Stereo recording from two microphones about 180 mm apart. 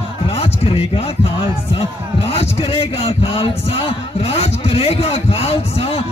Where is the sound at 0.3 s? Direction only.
35° left (ahead or behind).